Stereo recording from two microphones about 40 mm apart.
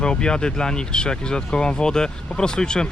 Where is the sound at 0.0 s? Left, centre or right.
Left.